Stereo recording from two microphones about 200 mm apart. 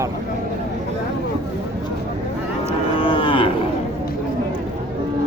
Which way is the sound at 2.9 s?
25° left (ahead or behind).